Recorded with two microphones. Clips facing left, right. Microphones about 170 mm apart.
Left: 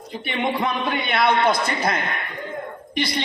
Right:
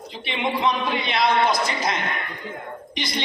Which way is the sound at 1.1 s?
60° left (ahead or behind).